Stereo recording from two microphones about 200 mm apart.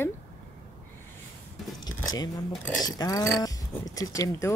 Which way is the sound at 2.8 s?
15° left (ahead or behind).